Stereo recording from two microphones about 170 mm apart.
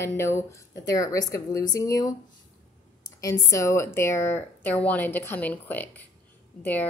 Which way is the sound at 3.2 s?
15° left (ahead or behind).